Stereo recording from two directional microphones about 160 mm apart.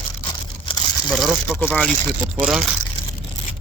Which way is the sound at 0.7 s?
30° left (ahead or behind).